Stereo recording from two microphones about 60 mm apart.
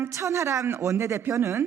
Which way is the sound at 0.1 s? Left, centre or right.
Right.